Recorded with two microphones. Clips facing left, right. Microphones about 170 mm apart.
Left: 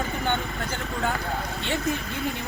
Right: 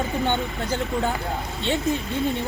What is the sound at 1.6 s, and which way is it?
Speech, 20° right (ahead or behind).